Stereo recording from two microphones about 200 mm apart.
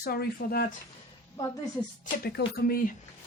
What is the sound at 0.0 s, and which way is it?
Speech, 50° left (ahead or behind).